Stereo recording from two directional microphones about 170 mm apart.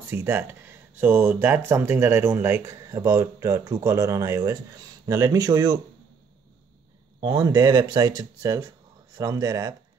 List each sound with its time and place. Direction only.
0.1 s speech: 15° right (ahead or behind)
7.2 s speech: 25° right (ahead or behind)